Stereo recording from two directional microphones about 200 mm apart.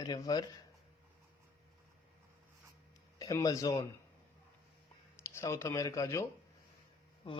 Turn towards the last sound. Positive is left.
turn(degrees=15)  # may be behind; listen again after turning